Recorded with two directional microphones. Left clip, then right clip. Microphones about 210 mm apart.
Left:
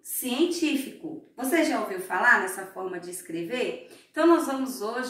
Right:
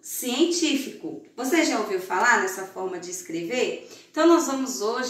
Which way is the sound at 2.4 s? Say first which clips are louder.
Right 4 dB; 15° left (ahead or behind).